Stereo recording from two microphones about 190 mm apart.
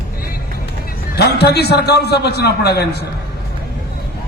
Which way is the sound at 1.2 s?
60° left (ahead or behind).